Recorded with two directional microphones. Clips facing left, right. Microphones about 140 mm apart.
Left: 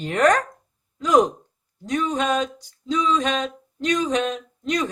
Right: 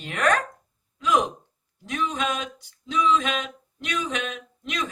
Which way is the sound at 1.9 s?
40° left (ahead or behind).